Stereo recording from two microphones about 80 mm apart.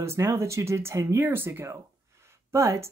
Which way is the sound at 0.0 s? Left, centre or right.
Right.